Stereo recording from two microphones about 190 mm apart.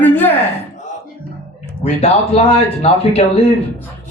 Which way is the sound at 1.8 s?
35° left (ahead or behind).